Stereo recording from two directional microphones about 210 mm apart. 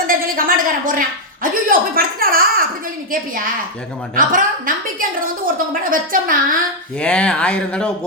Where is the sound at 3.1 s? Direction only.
40° right (ahead or behind).